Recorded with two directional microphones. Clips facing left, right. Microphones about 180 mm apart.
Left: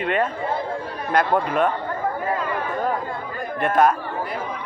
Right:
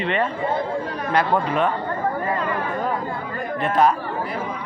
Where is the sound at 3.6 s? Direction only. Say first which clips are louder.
Left 1 dB; 50° left (ahead or behind).